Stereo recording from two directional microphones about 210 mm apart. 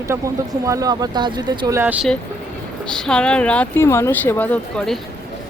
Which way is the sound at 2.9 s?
5° left (ahead or behind).